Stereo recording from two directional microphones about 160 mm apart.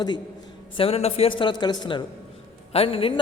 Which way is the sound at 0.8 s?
40° left (ahead or behind).